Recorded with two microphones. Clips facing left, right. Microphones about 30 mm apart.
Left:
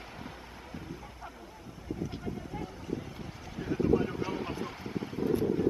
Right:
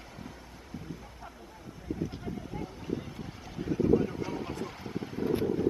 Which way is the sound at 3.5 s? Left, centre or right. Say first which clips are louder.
Right 2 dB; centre.